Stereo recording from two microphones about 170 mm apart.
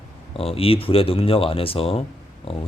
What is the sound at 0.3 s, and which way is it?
A man's voice, 35° left (ahead or behind).